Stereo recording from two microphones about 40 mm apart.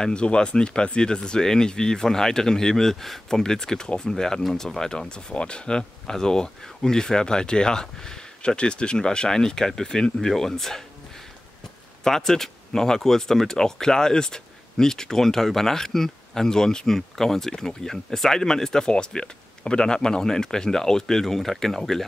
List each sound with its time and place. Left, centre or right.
0.0 s speech: left
8.4 s speech: left
12.0 s speech: centre